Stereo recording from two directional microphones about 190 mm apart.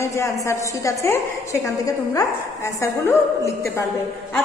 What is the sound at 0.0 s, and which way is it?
A woman's voice, 15° left (ahead or behind).